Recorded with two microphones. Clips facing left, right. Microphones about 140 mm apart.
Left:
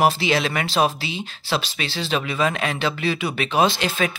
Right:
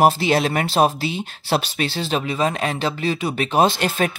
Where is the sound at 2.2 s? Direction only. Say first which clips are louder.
Right 1 dB; 35° right (ahead or behind).